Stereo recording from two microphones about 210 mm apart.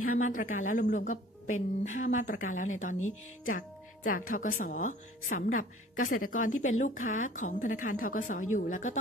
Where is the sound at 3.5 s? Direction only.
40° left (ahead or behind).